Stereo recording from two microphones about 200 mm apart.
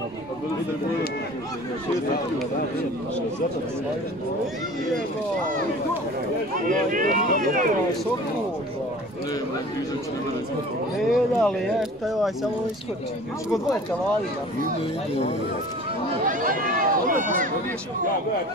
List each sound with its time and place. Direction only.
6.7 s speech: 45° right (ahead or behind)
11.0 s speech: centre (ahead or behind)
16.3 s run: 45° right (ahead or behind)